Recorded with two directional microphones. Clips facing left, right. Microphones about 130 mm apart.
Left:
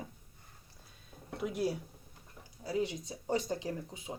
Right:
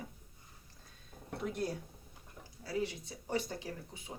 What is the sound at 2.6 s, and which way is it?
Speech, 20° left (ahead or behind).